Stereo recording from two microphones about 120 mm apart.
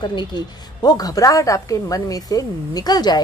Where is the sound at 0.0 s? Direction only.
40° left (ahead or behind).